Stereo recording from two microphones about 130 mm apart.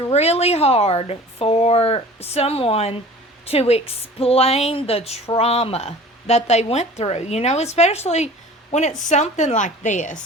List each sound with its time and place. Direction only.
0.1 s a woman's voice: 55° left (ahead or behind); by 10.2 s 75° left (ahead or behind)